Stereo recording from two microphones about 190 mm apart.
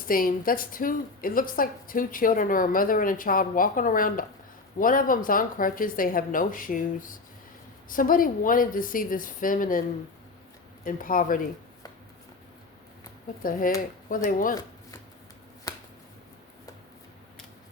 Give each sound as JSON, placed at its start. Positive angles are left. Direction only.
{"t": 0.1, "sound": "a woman's voice", "side_deg": 50}
{"t": 10.8, "sound": "a woman's voice", "side_deg": 45}
{"t": 13.4, "sound": "a woman's voice", "side_deg": 45}
{"t": 15.7, "sound": "finger snapping", "side_deg": 20}